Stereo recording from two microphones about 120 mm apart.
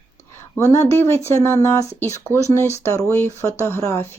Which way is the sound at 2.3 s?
20° right (ahead or behind).